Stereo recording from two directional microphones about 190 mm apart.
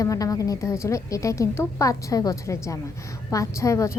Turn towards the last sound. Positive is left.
turn(degrees=15)  # may be behind; listen again after turning